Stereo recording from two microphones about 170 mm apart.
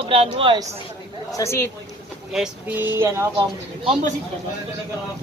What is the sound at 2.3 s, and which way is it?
Speech, 5° right (ahead or behind).